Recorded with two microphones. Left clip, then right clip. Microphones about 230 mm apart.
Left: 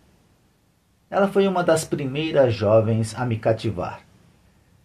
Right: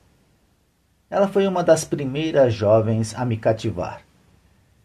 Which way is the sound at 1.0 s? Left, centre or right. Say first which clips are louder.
Even; right.